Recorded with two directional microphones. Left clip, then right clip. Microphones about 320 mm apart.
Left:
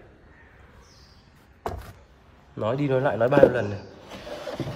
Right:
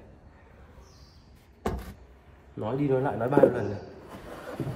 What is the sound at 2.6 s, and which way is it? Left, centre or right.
A man's voice, left.